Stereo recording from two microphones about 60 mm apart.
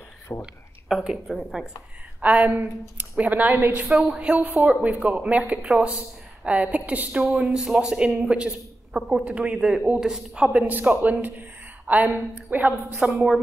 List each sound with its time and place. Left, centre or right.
0.4 s speech: centre
2.2 s a woman's voice: right
3.8 s a woman's voice: centre; by 7.2 s right
7.4 s a man's voice: centre
10.5 s a woman's voice: right
13.0 s a man's voice: centre